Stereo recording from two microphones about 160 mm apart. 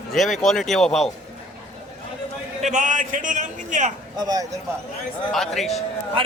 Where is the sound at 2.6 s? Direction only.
50° right (ahead or behind).